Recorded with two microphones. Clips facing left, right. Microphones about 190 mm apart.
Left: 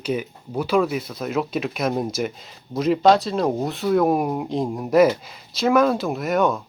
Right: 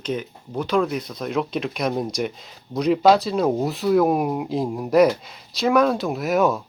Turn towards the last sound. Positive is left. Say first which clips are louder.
# right 1 dB
turn(degrees=-5)  # may be behind; listen again after turning